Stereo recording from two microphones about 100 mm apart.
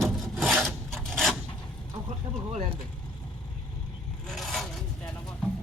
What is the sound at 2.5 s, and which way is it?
Speech, 90° right.